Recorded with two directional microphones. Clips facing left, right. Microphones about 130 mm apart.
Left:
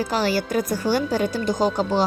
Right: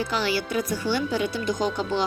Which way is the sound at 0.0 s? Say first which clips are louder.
Left 4 dB; 40° left (ahead or behind).